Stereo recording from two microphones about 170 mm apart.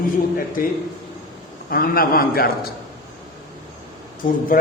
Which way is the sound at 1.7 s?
60° left (ahead or behind).